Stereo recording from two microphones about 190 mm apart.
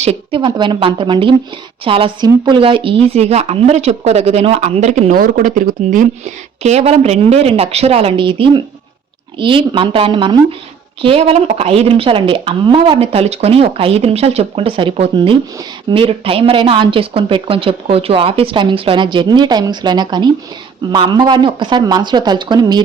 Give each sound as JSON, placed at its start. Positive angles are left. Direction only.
{"t": 0.0, "sound": "a woman's voice", "side_deg": -30}